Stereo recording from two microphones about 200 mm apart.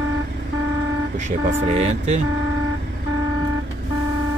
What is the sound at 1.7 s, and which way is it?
Speech, 35° right (ahead or behind).